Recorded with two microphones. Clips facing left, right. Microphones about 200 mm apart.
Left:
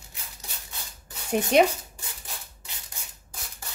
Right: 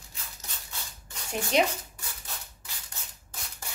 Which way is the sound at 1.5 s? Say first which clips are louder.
Left 5 dB; 60° left (ahead or behind).